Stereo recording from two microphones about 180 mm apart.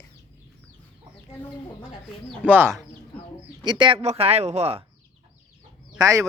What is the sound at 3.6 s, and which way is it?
Speech, 25° right (ahead or behind).